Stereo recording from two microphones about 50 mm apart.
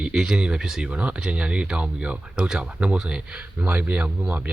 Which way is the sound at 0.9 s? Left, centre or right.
Right.